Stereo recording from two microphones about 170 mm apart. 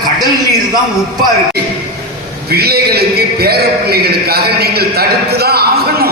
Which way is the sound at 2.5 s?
65° right (ahead or behind).